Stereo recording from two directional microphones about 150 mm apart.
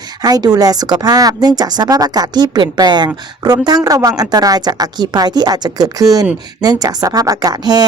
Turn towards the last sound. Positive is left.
turn(degrees=-25)  # may be behind; listen again after turning